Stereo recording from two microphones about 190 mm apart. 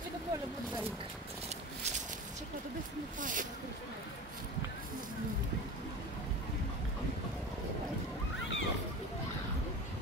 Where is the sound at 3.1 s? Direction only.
45° right (ahead or behind).